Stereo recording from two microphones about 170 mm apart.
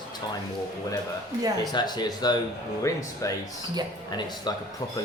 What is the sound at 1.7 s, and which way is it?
Speech, 25° left (ahead or behind).